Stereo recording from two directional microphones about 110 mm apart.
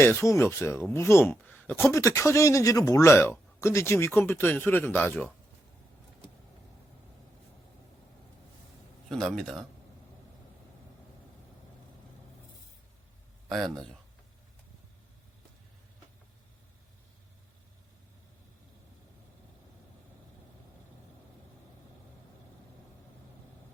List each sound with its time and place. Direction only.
0.0 s speech: 25° left (ahead or behind)
1.9 s speech: 30° left (ahead or behind)
9.0 s speech: 5° left (ahead or behind)